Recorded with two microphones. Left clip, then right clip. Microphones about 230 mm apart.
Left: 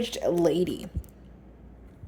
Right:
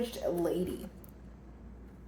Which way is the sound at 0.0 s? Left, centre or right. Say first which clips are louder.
Left 8 dB; left.